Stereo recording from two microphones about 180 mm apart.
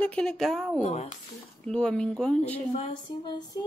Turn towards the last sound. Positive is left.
turn(degrees=25)  # may be behind; listen again after turning